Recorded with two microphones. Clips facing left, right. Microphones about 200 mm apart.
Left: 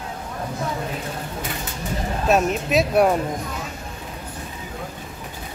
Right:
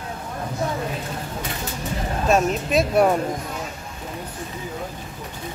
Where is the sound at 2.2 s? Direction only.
Centre (ahead or behind).